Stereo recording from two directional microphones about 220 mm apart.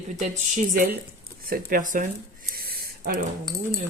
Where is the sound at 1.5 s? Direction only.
40° right (ahead or behind).